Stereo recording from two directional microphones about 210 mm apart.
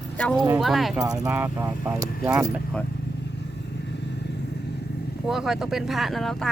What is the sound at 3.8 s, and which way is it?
Vehicle, 55° left (ahead or behind).